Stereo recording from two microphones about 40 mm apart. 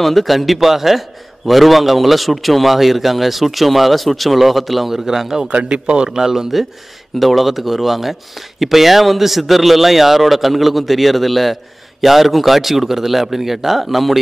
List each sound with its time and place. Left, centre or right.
0.0 s speech: centre
5.5 s speech: right
6.1 s speech: centre